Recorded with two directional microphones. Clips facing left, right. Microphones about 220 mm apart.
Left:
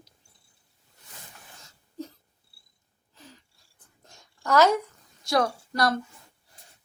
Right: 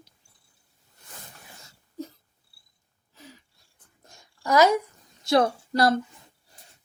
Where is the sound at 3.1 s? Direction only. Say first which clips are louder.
Right 2 dB; 10° right (ahead or behind).